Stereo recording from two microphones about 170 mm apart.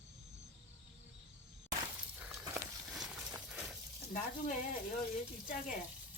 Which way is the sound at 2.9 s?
Centre (ahead or behind).